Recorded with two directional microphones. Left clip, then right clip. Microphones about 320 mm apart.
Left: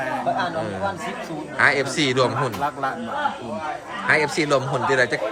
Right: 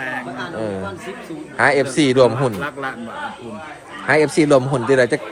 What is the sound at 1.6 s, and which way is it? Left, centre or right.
Speech, centre.